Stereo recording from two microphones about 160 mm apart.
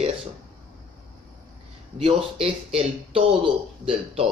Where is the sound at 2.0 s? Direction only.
35° right (ahead or behind).